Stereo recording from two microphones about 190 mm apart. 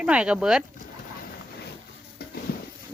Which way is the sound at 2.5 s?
50° left (ahead or behind).